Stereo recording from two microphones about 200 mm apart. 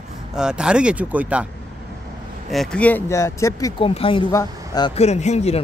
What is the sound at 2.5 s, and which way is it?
Speech, 5° left (ahead or behind).